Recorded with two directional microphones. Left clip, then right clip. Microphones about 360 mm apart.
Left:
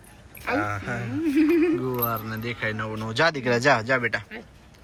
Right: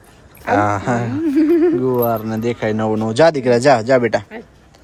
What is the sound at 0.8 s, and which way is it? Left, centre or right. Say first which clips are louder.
Speech: right 12 dB; right.